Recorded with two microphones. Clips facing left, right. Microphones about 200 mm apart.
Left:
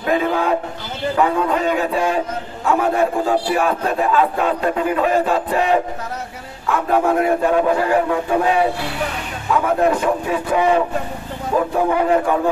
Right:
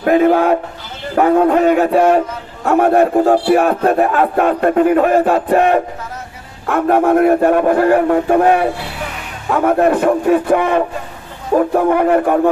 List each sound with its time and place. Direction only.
0.0 s speech: 55° right (ahead or behind)